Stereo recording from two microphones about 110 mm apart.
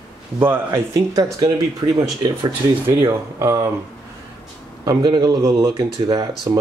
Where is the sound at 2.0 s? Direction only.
35° right (ahead or behind).